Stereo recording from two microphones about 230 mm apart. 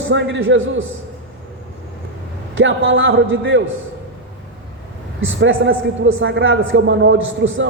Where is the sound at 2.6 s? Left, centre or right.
Right.